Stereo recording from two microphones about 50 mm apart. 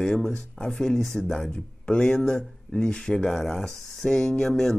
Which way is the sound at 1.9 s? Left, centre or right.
Left.